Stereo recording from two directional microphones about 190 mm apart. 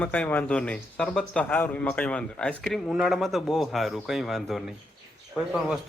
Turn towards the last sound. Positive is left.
turn(degrees=0)  # may be behind; listen again after turning